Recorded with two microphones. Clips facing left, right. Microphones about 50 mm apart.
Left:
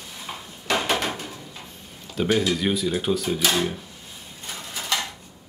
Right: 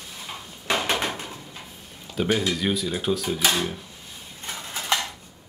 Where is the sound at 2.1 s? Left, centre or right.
Centre.